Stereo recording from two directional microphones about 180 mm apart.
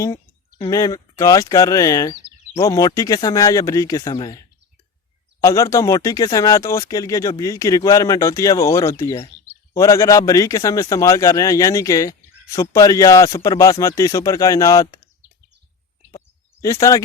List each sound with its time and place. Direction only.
0.7 s a man's voice: 20° left (ahead or behind)
5.4 s a man's voice: 15° left (ahead or behind)
16.1 s a sound: 20° left (ahead or behind)